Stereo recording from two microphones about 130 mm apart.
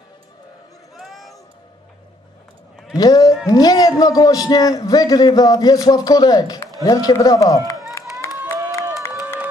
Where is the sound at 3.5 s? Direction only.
30° left (ahead or behind).